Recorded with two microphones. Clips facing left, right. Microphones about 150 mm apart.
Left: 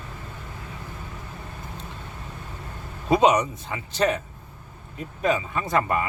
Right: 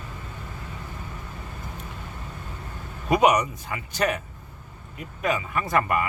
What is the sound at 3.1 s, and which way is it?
Speech, 25° left (ahead or behind).